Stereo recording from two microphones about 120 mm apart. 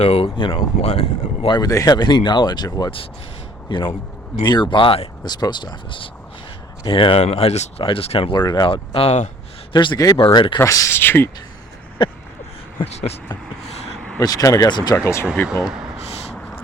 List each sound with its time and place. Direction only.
0.0 s speech: 55° left (ahead or behind)
0.9 s speech: 65° left (ahead or behind)
1.5 s speech: 35° left (ahead or behind); by 8.3 s 50° left (ahead or behind)
8.3 s speech: 35° left (ahead or behind); by 9.3 s 65° left (ahead or behind)
9.7 s speech: 35° left (ahead or behind)
10.6 s speech: 25° left (ahead or behind)
12.8 s speech: 60° left (ahead or behind)
13.9 s vehicle: 5° left (ahead or behind)
14.2 s speech: 30° left (ahead or behind)
14.9 s speech: 20° left (ahead or behind)